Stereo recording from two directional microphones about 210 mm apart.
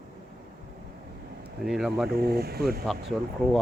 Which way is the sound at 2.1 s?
45° right (ahead or behind).